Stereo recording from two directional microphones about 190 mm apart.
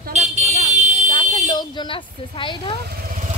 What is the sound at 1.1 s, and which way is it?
Speech, 25° left (ahead or behind).